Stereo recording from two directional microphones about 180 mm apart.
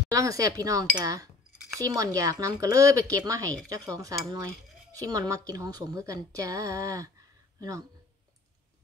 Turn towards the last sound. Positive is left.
turn(degrees=-20)  # may be behind; listen again after turning